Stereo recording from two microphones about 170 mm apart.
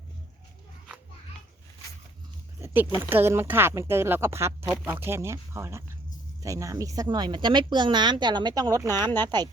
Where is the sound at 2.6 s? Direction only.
15° right (ahead or behind).